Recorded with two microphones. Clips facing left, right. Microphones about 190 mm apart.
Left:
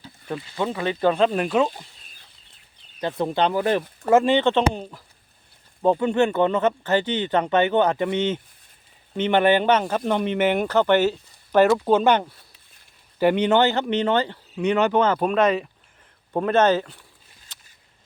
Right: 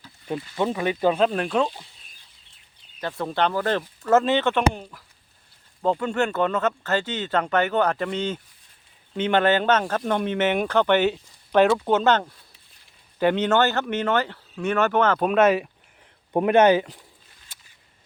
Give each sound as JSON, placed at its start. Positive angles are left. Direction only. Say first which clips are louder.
{"t": 0.3, "sound": "speech", "louder": "right 1 dB", "side_deg": -20}
{"t": 3.0, "sound": "speech", "louder": "left 2 dB", "side_deg": 20}
{"t": 15.2, "sound": "speech", "louder": "right 1 dB", "side_deg": -5}
{"t": 16.3, "sound": "speech", "louder": "right 2 dB", "side_deg": -15}
{"t": 17.5, "sound": "a sound", "louder": "left 1 dB", "side_deg": -10}